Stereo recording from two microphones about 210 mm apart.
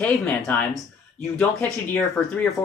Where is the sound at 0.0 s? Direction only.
5° left (ahead or behind).